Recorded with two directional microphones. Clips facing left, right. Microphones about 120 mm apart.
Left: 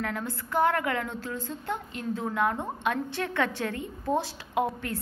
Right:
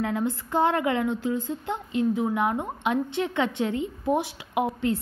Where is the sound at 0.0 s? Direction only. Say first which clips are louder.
Right 6 dB; 20° right (ahead or behind).